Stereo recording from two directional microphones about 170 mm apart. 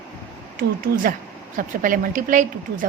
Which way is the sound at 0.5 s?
55° right (ahead or behind).